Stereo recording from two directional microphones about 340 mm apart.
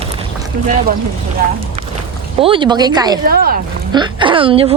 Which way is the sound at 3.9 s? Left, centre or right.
Centre.